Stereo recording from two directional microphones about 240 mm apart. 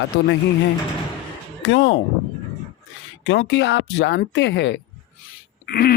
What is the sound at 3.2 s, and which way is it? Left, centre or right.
Speech, left.